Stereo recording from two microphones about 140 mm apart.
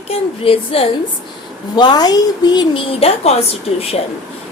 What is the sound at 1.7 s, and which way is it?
Speech, 30° left (ahead or behind).